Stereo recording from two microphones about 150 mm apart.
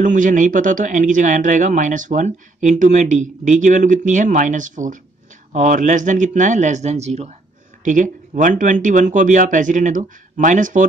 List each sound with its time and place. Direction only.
0.0 s speech: 60° right (ahead or behind)
7.8 s speech: 60° right (ahead or behind)